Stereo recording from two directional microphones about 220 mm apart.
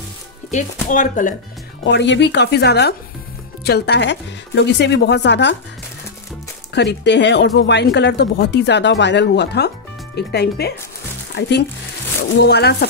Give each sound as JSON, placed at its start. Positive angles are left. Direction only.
{"t": 0.5, "sound": "speech", "side_deg": 35}
{"t": 1.9, "sound": "speech", "side_deg": 50}
{"t": 6.7, "sound": "speech", "side_deg": 50}